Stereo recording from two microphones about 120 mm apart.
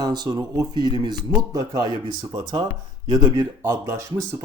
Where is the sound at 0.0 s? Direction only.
35° right (ahead or behind).